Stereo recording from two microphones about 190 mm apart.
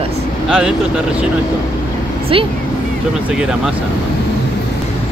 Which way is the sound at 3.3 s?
5° right (ahead or behind).